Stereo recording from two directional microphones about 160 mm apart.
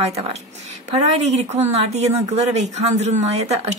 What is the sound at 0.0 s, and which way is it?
A woman's voice, 40° right (ahead or behind).